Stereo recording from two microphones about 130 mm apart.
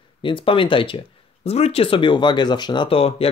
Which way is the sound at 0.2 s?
40° left (ahead or behind).